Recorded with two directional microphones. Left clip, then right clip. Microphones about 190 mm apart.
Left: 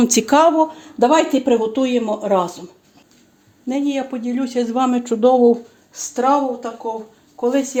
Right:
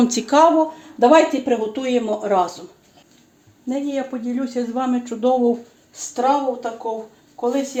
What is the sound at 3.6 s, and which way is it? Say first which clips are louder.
Speech: left 3 dB; 35° left (ahead or behind).